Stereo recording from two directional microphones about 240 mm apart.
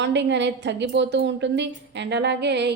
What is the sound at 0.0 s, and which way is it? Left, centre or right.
A woman's voice, right.